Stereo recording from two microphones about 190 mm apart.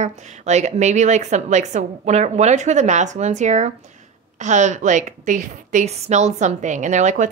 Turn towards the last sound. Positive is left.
turn(degrees=-40)  # may be behind; listen again after turning